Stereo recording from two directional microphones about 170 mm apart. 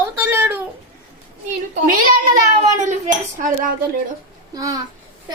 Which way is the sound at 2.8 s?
45° right (ahead or behind).